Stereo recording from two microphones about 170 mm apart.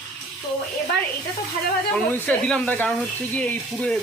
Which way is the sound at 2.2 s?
5° left (ahead or behind).